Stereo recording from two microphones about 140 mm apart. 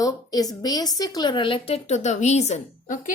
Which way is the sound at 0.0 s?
25° left (ahead or behind).